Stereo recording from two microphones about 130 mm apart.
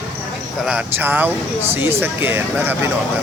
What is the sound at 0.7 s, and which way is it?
Speech, 10° right (ahead or behind).